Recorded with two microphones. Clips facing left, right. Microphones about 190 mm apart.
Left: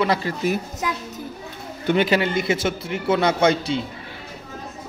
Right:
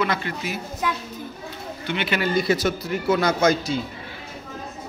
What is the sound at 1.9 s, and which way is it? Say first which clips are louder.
Speech: left 8 dB; 40° left (ahead or behind).